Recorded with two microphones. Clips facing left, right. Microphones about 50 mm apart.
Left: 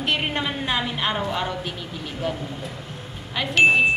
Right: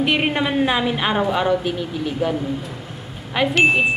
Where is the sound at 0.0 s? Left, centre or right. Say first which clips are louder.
Right 5 dB; centre.